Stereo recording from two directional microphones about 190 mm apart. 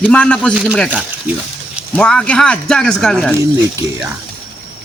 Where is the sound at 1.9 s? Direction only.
5° left (ahead or behind).